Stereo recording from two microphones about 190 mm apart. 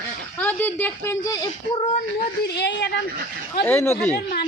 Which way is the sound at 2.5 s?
65° left (ahead or behind).